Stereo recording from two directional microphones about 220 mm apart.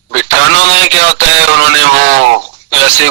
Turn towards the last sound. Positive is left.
turn(degrees=-60)  # may be behind; listen again after turning